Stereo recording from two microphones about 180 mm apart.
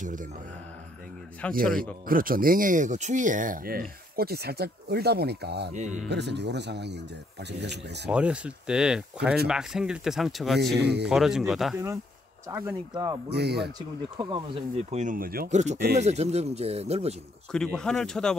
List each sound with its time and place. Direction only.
0.0 s speech: 45° right (ahead or behind)
1.4 s a man's voice: 5° left (ahead or behind)
2.0 s speech: 50° right (ahead or behind)
5.7 s speech: 40° right (ahead or behind)
6.0 s speech: 70° right (ahead or behind)
8.1 s speech: 5° right (ahead or behind)
10.8 s speech: 70° right (ahead or behind)
11.1 s speech: centre (ahead or behind)
12.4 s speech: 15° right (ahead or behind)
13.3 s speech: 65° right (ahead or behind)
13.7 s speech: 25° right (ahead or behind)
17.5 s speech: 5° left (ahead or behind)